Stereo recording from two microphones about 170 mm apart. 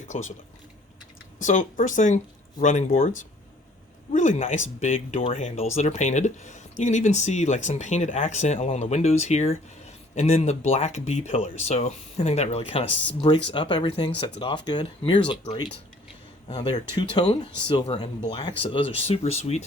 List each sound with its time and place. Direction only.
0.1 s speech: 45° left (ahead or behind)
1.4 s speech: 50° left (ahead or behind)
4.1 s speech: 45° left (ahead or behind)